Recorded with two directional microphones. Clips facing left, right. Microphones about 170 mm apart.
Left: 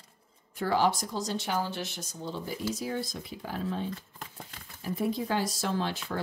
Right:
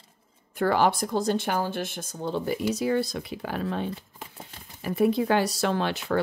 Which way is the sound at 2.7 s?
70° right (ahead or behind).